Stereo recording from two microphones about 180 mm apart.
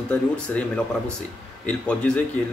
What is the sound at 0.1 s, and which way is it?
Speech, 5° left (ahead or behind).